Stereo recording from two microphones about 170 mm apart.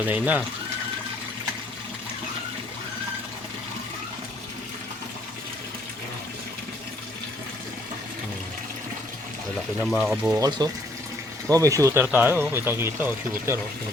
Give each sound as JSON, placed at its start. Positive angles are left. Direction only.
{"t": 0.0, "sound": "speech", "side_deg": -10}
{"t": 9.8, "sound": "speech", "side_deg": 0}
{"t": 10.3, "sound": "speech", "side_deg": -20}